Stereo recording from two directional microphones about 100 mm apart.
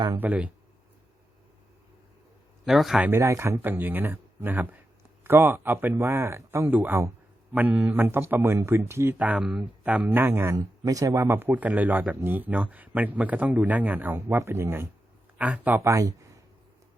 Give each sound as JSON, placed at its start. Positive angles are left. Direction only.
{"t": 0.2, "sound": "speech", "side_deg": -15}
{"t": 2.6, "sound": "a man's voice", "side_deg": -5}
{"t": 3.0, "sound": "speech", "side_deg": -25}
{"t": 6.7, "sound": "speech", "side_deg": -15}
{"t": 10.8, "sound": "speech", "side_deg": -35}
{"t": 14.2, "sound": "speech", "side_deg": -30}
{"t": 15.8, "sound": "speech", "side_deg": -30}